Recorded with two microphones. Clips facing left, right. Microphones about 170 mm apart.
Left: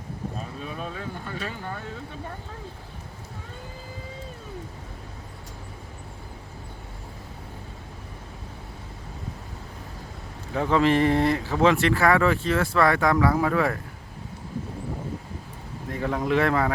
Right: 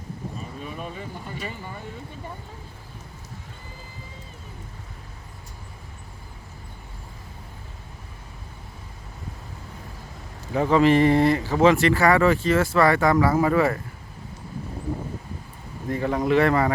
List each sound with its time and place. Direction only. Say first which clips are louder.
1.3 s speech: left 2 dB; 70° left (ahead or behind)
10.5 s speech: right 3 dB; 5° right (ahead or behind)
15.9 s speech: right 3 dB; centre (ahead or behind)